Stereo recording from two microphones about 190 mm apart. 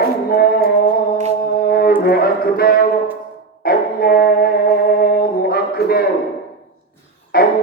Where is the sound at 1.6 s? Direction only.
55° left (ahead or behind).